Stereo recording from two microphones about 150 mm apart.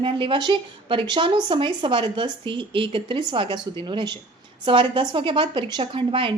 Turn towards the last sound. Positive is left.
turn(degrees=-35)  # may be behind; listen again after turning